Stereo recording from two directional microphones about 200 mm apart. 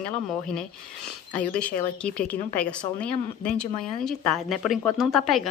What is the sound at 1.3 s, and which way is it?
A woman's voice, 5° left (ahead or behind).